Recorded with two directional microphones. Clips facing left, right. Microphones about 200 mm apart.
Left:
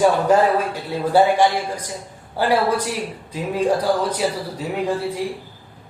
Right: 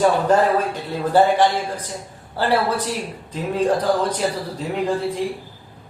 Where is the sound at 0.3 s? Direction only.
10° left (ahead or behind).